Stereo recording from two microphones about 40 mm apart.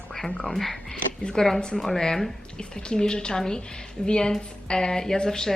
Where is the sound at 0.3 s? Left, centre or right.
Centre.